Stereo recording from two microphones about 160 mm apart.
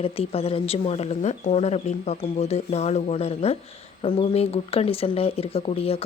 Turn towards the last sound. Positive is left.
turn(degrees=40)  # may be behind; listen again after turning